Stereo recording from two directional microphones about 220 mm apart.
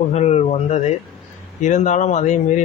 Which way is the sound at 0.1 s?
30° left (ahead or behind).